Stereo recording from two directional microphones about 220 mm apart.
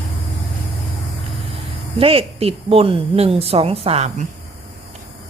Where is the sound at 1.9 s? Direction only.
25° right (ahead or behind).